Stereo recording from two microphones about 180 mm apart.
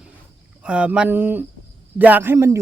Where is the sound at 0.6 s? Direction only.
5° right (ahead or behind).